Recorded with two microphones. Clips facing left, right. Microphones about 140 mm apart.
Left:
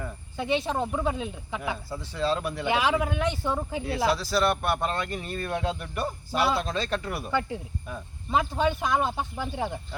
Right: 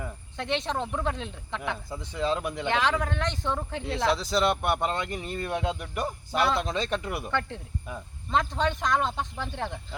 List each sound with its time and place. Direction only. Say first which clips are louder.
0.3 s speech: left 3 dB; 5° left (ahead or behind)
2.0 s speech: left 1 dB; 15° right (ahead or behind)
2.6 s speech: left 2 dB; 10° left (ahead or behind)
4.1 s speech: right 1 dB; 20° right (ahead or behind)
6.3 s speech: even; 5° left (ahead or behind)
6.6 s speech: even; 20° right (ahead or behind)
7.3 s speech: left 2 dB; 5° left (ahead or behind)